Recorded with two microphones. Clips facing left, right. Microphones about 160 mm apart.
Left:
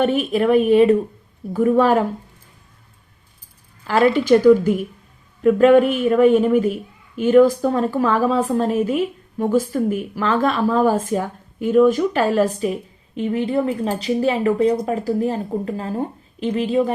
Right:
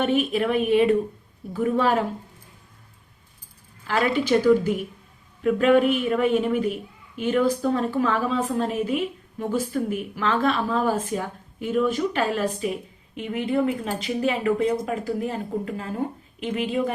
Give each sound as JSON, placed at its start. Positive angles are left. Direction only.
{"t": 0.0, "sound": "a woman's voice", "side_deg": 40}
{"t": 3.8, "sound": "a woman's voice", "side_deg": 45}